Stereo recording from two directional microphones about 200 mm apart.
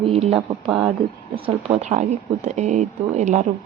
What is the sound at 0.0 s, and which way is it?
Speech, 30° right (ahead or behind).